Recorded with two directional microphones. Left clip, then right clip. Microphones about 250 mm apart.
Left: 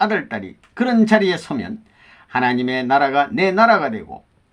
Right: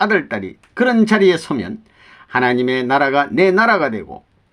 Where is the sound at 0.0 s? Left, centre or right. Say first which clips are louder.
Right 3 dB; right.